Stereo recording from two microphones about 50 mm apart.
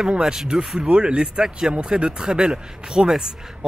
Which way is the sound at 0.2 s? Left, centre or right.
Centre.